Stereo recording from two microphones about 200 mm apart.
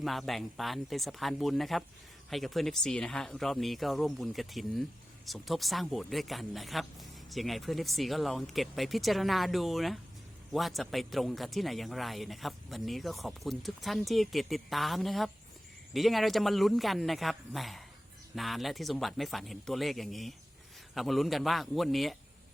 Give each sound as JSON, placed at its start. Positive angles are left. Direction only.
{"t": 0.0, "sound": "speech", "side_deg": 0}